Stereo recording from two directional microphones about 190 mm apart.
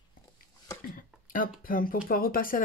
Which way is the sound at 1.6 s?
45° left (ahead or behind).